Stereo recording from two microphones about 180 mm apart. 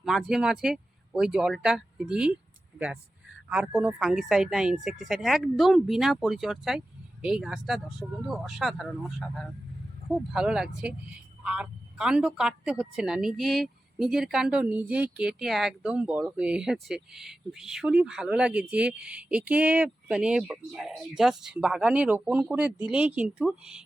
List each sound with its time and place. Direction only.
0.0 s a woman's voice: centre (ahead or behind)